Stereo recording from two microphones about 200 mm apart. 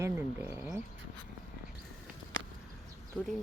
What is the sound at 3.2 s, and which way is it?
Speech, 5° left (ahead or behind).